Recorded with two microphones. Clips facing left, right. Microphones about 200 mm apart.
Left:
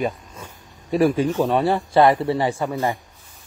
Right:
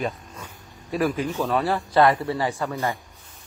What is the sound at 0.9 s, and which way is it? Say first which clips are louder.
Speech: left 6 dB; 30° left (ahead or behind).